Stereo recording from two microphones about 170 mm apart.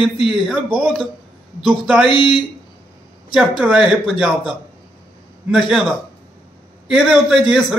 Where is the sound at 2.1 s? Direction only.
30° left (ahead or behind).